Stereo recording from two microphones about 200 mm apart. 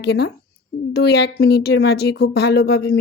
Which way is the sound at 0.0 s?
55° left (ahead or behind).